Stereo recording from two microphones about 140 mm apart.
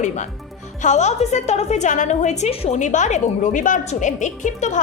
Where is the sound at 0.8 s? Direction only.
55° left (ahead or behind).